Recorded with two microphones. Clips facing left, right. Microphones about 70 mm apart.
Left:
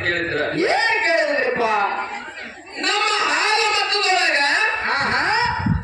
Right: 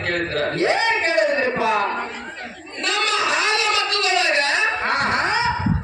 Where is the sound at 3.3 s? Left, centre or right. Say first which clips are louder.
Left 1 dB; left.